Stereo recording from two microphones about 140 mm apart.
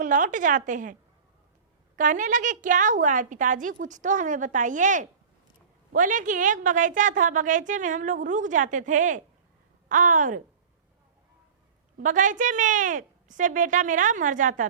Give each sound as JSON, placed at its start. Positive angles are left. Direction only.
{"t": 0.0, "sound": "a woman's voice", "side_deg": -65}
{"t": 2.0, "sound": "a woman's voice", "side_deg": -65}
{"t": 11.9, "sound": "a woman's voice", "side_deg": -65}